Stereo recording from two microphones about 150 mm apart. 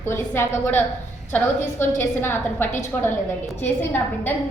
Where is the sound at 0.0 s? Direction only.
15° left (ahead or behind).